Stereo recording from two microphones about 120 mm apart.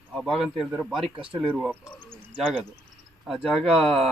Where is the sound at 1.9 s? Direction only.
10° left (ahead or behind).